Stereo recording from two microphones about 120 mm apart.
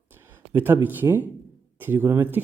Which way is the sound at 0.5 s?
15° right (ahead or behind).